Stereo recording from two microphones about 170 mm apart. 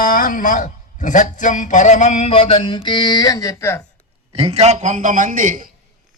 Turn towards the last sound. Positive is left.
turn(degrees=-50)  # may be behind; listen again after turning